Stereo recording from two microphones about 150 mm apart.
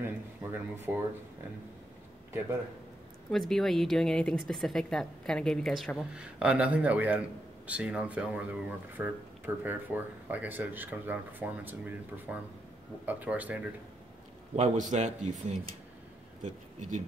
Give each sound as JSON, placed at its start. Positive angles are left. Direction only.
{"t": 0.0, "sound": "a sound", "side_deg": -15}
{"t": 3.3, "sound": "a woman's voice", "side_deg": 0}
{"t": 14.5, "sound": "a man's voice", "side_deg": -50}